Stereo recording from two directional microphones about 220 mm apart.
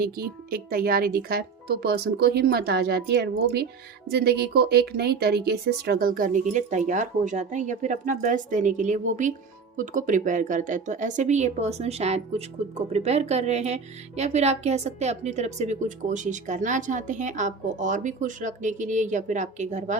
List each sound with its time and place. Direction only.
0.0 s speech: 40° right (ahead or behind)